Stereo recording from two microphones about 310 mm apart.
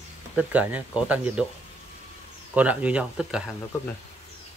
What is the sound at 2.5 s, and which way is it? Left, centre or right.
Speech, centre.